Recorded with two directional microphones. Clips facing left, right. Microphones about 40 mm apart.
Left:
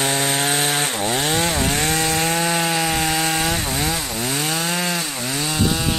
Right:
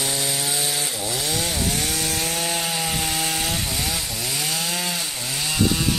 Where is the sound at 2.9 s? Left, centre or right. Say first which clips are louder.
Left 5 dB; left.